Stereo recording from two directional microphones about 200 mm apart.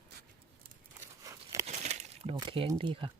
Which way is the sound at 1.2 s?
15° right (ahead or behind).